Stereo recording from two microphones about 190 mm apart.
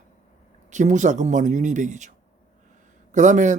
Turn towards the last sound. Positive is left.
turn(degrees=-40)  # may be behind; listen again after turning